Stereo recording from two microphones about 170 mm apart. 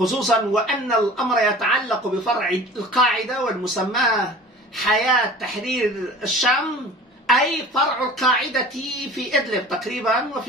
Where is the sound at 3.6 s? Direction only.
Centre (ahead or behind).